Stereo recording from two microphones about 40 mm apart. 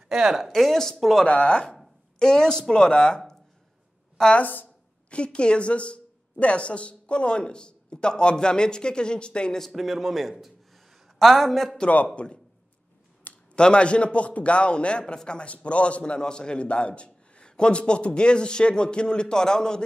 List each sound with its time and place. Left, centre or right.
0.1 s speech: centre
0.5 s speech: centre
1.2 s a man's voice: left
4.4 s a woman's voice: left
5.1 s a man's voice: left
9.6 s a man's voice: centre
12.2 s a man's voice: left
13.3 s a sound: left
13.6 s a man's voice: left